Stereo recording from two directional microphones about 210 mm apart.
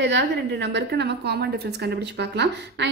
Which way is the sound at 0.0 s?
55° right (ahead or behind).